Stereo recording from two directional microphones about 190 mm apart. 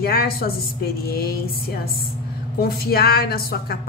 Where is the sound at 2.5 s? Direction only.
55° left (ahead or behind).